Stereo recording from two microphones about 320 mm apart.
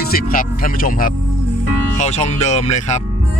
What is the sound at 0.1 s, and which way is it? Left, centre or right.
Speech, left.